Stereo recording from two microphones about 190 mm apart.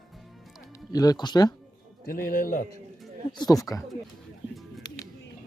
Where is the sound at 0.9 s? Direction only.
20° left (ahead or behind).